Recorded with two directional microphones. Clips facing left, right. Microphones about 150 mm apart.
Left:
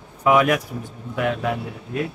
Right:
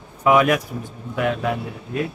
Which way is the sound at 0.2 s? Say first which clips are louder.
Right 1 dB; 15° right (ahead or behind).